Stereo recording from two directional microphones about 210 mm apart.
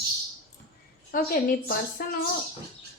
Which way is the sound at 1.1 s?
40° left (ahead or behind).